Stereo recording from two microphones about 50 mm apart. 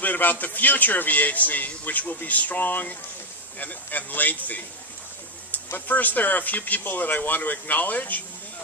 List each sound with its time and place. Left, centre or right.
0.0 s a man's voice: left
5.9 s a man's voice: left